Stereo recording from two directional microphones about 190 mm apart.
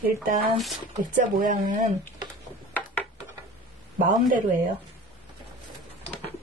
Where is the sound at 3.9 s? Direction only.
45° right (ahead or behind).